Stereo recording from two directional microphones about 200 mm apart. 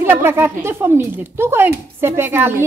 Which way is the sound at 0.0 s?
10° right (ahead or behind).